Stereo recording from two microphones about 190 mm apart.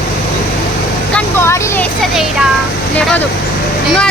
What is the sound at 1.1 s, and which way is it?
Vehicle, 10° left (ahead or behind).